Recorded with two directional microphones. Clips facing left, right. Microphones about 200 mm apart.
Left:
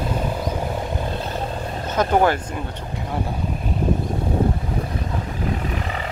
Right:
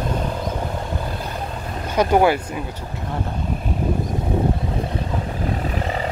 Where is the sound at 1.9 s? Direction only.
10° right (ahead or behind).